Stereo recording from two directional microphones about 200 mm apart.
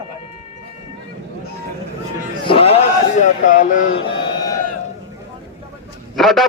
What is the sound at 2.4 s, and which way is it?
Speech, 30° left (ahead or behind).